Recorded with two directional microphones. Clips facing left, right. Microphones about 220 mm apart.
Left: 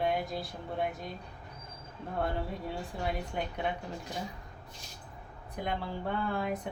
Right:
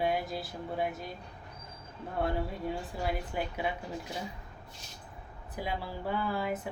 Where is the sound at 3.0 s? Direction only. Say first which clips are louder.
Right 1 dB; 5° right (ahead or behind).